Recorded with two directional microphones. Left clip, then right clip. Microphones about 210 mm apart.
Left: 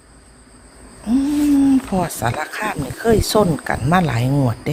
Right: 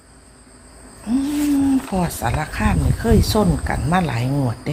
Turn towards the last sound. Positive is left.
turn(degrees=30)  # may be behind; listen again after turning